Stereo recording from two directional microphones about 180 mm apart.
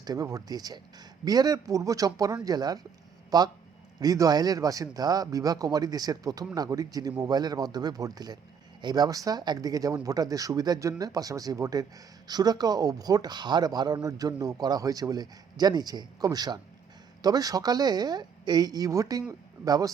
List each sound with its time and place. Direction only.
0.0 s speech: 20° right (ahead or behind)